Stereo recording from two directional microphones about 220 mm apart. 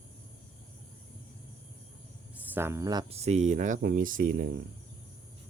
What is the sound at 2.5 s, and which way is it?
Speech, 10° right (ahead or behind).